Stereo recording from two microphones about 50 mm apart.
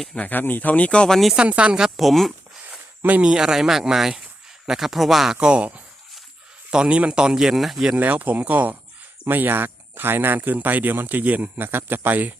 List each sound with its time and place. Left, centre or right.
0.2 s speech: left
1.4 s speech: right
2.0 s speech: centre
3.3 s speech: centre
5.4 s speech: centre
6.7 s speech: right; by 7.9 s centre
7.9 s speech: right